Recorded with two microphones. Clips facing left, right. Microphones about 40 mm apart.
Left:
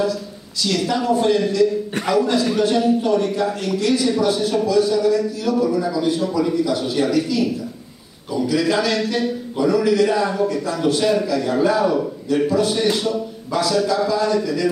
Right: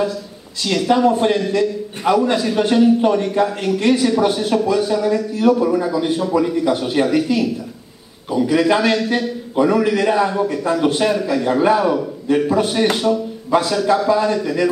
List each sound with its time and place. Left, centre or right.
0.0 s a man's voice: right